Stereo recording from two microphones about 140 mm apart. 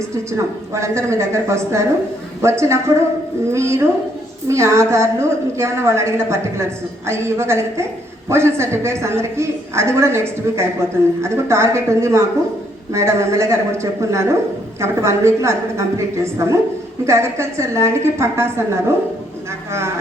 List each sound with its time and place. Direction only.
0.3 s a woman's voice: 20° right (ahead or behind)